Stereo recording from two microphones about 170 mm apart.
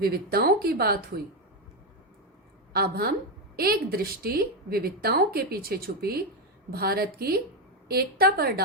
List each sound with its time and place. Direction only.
0.0 s speech: 65° right (ahead or behind)
2.7 s a woman's voice: 65° right (ahead or behind)